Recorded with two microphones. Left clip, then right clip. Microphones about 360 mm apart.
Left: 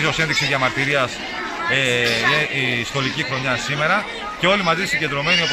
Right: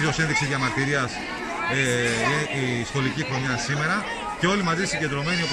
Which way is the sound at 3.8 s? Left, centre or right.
Centre.